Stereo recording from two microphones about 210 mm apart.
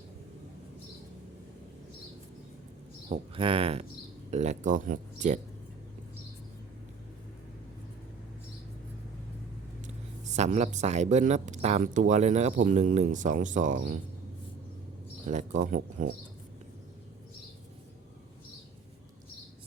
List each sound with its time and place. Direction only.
3.1 s speech: 25° right (ahead or behind)
9.8 s speech: 35° right (ahead or behind)
15.3 s speech: 35° right (ahead or behind)